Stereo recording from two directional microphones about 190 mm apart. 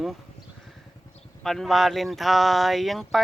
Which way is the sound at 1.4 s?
Centre (ahead or behind).